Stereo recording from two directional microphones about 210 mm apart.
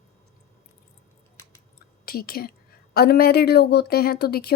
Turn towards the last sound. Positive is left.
turn(degrees=50)  # may be behind; listen again after turning